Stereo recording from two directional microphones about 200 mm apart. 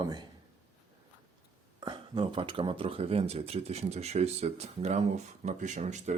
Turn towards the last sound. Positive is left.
turn(degrees=-35)  # may be behind; listen again after turning